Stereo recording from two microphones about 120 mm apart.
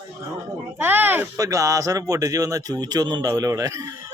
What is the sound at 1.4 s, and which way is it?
Speech, 25° right (ahead or behind).